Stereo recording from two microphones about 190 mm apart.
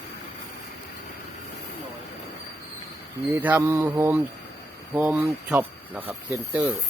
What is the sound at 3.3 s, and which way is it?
Speech, 10° right (ahead or behind).